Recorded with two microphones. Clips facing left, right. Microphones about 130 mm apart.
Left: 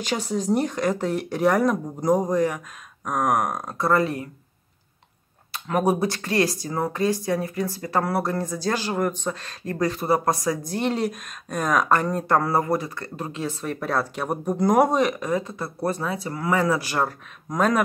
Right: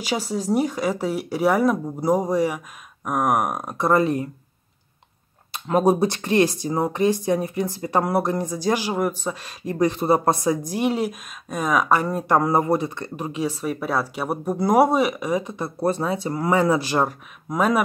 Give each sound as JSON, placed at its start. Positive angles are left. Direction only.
{"t": 0.0, "sound": "speech", "side_deg": -5}
{"t": 5.5, "sound": "speech", "side_deg": -25}
{"t": 10.7, "sound": "speech", "side_deg": -10}
{"t": 17.5, "sound": "speech", "side_deg": -10}